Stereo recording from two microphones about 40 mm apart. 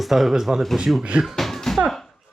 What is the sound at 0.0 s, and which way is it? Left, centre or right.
Speech, centre.